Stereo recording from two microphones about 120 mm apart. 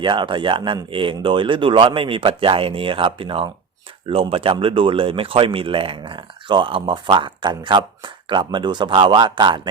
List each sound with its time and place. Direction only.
0.0 s speech: 40° right (ahead or behind)